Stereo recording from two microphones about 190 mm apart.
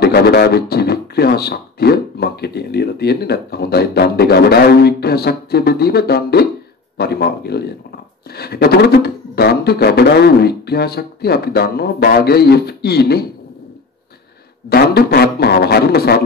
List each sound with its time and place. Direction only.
0.0 s speech: 55° left (ahead or behind)
14.7 s speech: 55° left (ahead or behind)